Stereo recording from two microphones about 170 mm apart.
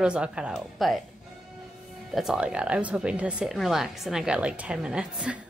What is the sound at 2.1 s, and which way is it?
Speech, 5° right (ahead or behind).